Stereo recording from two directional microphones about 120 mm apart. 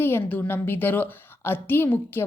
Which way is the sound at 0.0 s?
20° left (ahead or behind).